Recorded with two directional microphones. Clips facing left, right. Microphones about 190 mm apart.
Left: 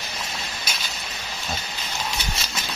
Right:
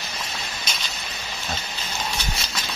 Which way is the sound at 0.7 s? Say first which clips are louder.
Even; 5° left (ahead or behind).